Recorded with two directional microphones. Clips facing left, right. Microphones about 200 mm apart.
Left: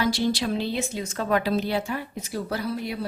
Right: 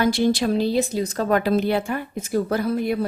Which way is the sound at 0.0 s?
50° right (ahead or behind).